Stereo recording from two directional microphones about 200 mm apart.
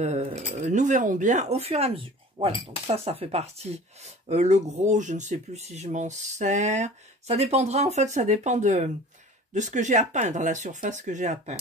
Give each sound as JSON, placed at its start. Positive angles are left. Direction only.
{"t": 0.0, "sound": "speech", "side_deg": -35}